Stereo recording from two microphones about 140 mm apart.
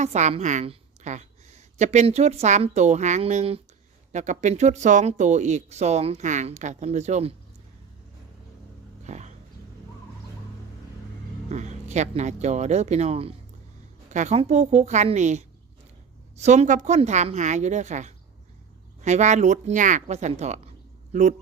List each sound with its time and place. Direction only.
0.0 s speech: 55° right (ahead or behind)
9.0 s a sound: 55° right (ahead or behind)
11.4 s speech: 55° right (ahead or behind)
14.1 s a woman's voice: 55° right (ahead or behind)